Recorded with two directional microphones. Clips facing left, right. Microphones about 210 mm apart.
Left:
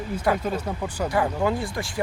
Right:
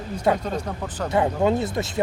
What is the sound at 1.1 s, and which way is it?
Speech, 25° right (ahead or behind).